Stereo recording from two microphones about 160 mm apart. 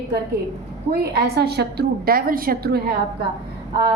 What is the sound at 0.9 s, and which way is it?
A woman's voice, 85° right.